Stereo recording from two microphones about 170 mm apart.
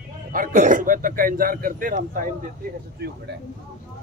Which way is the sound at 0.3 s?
55° right (ahead or behind).